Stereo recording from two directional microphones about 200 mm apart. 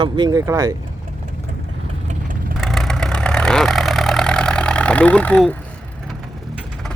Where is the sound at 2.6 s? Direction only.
Centre (ahead or behind).